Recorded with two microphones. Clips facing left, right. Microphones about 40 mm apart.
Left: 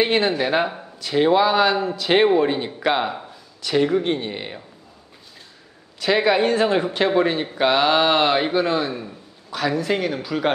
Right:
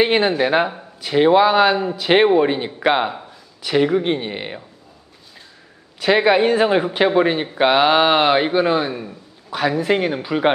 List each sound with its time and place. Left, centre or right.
0.0 s speech: centre
5.9 s speech: centre